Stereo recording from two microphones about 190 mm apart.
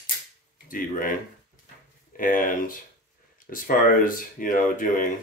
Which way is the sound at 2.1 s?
45° left (ahead or behind).